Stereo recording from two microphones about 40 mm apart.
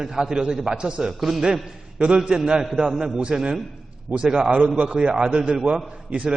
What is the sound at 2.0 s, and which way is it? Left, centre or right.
A man's voice, right.